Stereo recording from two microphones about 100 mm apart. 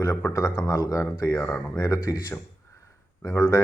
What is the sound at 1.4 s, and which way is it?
Speech, 15° left (ahead or behind).